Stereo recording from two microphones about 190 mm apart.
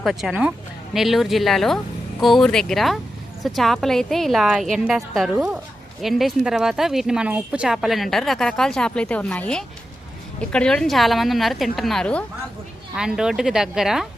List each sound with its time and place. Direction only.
0.0 s speech: centre (ahead or behind)